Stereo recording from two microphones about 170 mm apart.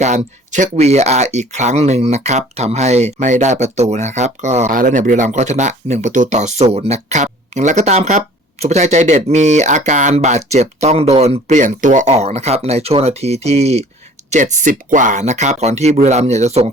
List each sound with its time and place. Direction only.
0.0 s speech: 45° right (ahead or behind)